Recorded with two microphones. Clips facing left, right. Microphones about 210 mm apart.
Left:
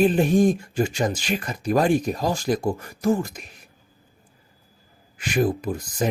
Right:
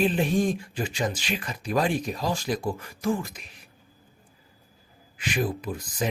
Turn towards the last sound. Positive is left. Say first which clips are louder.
# left 5 dB
turn(degrees=45)  # may be behind; listen again after turning